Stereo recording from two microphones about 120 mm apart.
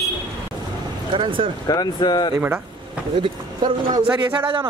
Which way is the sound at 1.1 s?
45° right (ahead or behind).